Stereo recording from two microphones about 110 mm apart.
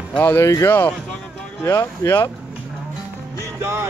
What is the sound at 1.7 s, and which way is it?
Speech, 25° left (ahead or behind).